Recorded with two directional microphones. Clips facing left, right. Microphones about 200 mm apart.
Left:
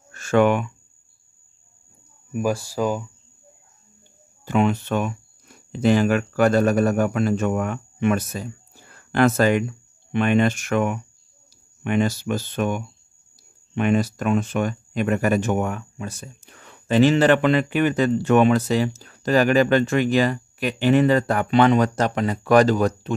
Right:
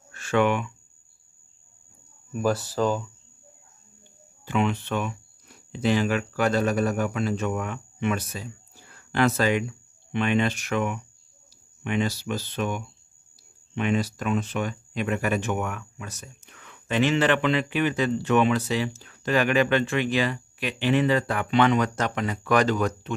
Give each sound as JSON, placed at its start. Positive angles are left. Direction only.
{"t": 0.1, "sound": "a sound", "side_deg": 45}
{"t": 2.3, "sound": "speech", "side_deg": 10}
{"t": 4.5, "sound": "speech", "side_deg": 45}